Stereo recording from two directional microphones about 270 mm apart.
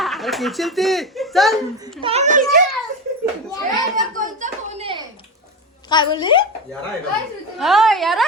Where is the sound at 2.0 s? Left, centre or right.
Right.